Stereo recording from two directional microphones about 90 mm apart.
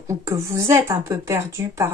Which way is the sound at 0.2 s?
30° right (ahead or behind).